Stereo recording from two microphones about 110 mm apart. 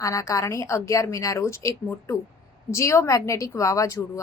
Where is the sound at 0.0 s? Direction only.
30° left (ahead or behind).